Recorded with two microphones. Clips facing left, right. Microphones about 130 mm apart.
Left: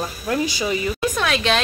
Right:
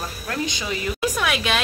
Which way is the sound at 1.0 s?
10° right (ahead or behind).